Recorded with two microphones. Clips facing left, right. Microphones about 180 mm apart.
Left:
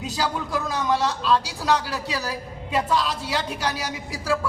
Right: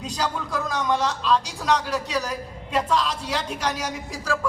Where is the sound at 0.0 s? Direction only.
5° left (ahead or behind).